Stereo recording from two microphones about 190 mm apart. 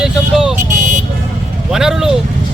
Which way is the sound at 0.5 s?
40° right (ahead or behind).